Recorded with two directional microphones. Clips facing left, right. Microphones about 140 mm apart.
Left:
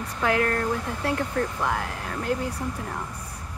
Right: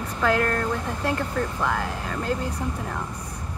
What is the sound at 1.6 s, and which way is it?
Speech, 10° left (ahead or behind).